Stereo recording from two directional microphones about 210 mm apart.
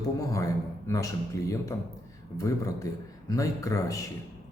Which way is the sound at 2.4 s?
15° left (ahead or behind).